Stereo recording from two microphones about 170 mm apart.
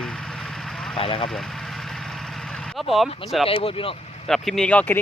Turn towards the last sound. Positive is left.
turn(degrees=5)  # may be behind; listen again after turning